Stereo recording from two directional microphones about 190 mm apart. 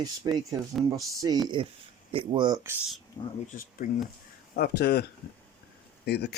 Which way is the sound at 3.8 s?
45° left (ahead or behind).